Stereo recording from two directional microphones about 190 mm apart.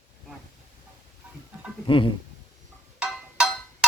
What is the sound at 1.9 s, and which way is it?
Speech, 25° left (ahead or behind).